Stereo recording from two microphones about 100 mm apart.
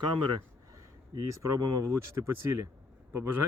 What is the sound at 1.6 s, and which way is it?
Speech, 40° right (ahead or behind).